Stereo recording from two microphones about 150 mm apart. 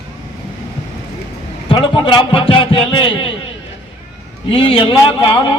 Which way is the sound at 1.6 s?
35° left (ahead or behind).